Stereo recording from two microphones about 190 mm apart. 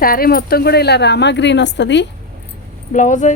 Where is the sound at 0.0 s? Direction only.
50° left (ahead or behind); by 2.0 s 65° left (ahead or behind).